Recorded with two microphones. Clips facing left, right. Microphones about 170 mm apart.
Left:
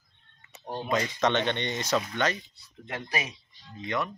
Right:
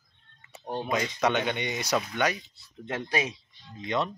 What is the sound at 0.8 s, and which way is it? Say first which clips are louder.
Speech: left 1 dB; 10° right (ahead or behind).